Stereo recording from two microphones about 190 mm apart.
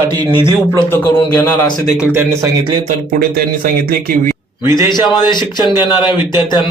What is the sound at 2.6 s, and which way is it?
Speech, 25° right (ahead or behind).